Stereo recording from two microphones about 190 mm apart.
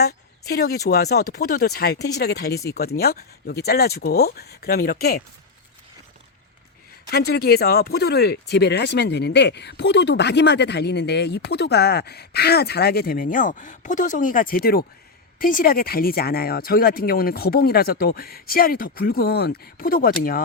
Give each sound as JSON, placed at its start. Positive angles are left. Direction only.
{"t": 0.0, "sound": "speech", "side_deg": 55}
{"t": 7.1, "sound": "speech", "side_deg": 55}